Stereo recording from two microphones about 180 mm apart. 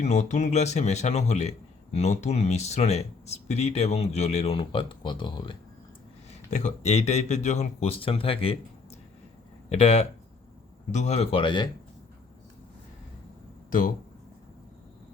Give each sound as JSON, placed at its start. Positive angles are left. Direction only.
{"t": 0.0, "sound": "speech", "side_deg": 40}
{"t": 6.5, "sound": "speech", "side_deg": 40}
{"t": 9.6, "sound": "speech", "side_deg": 35}
{"t": 13.7, "sound": "speech", "side_deg": 50}